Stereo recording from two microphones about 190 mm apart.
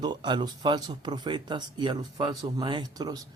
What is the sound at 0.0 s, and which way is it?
Speech, 25° right (ahead or behind).